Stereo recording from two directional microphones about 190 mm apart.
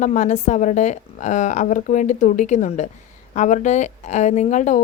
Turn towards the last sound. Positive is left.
turn(degrees=40)  # may be behind; listen again after turning